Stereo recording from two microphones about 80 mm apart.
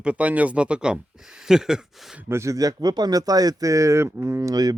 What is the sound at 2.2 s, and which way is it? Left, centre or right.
Speech, right.